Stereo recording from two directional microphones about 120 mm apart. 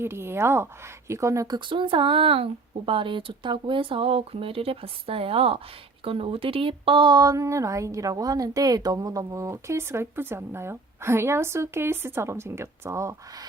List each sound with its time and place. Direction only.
0.0 s speech: 20° right (ahead or behind)
1.5 s speech: 40° right (ahead or behind); by 13.5 s 25° right (ahead or behind)